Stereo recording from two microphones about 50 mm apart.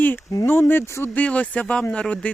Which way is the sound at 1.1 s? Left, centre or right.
Left.